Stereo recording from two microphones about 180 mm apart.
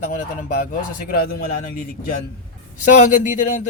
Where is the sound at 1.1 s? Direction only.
60° left (ahead or behind).